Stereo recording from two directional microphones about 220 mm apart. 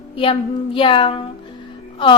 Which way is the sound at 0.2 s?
25° left (ahead or behind).